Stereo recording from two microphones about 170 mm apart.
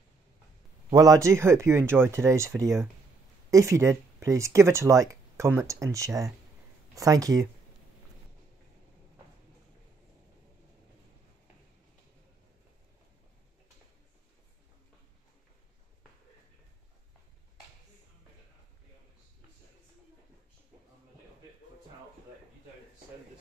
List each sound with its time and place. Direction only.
0.9 s speech: 20° right (ahead or behind)